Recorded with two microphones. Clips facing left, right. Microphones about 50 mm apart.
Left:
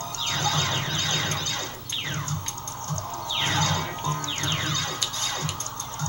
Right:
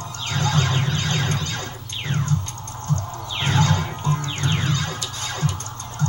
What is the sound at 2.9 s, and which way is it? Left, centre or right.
Music, right.